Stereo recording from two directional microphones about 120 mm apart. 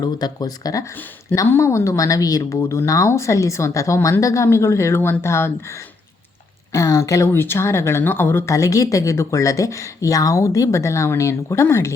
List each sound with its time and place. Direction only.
0.0 s speech: 35° left (ahead or behind)
6.7 s speech: 25° left (ahead or behind)